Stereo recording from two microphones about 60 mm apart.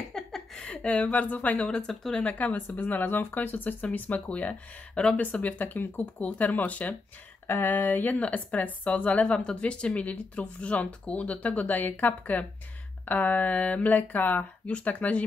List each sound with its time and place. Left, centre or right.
0.1 s a sound: centre
0.7 s speech: left
1.7 s speech: centre
2.2 s speech: left